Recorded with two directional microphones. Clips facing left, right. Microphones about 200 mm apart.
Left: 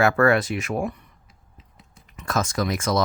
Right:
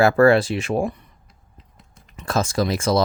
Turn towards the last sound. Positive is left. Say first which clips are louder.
# right 3 dB
turn(degrees=-30)  # may be behind; listen again after turning